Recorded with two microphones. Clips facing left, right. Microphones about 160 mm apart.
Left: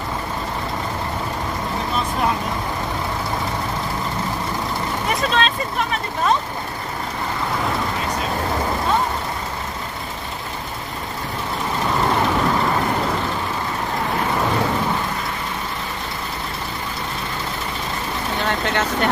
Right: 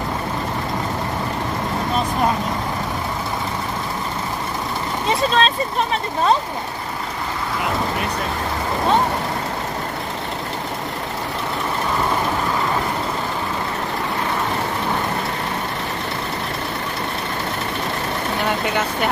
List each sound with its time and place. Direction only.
5.3 s vehicle: 35° right (ahead or behind)
18.7 s speech: 10° right (ahead or behind)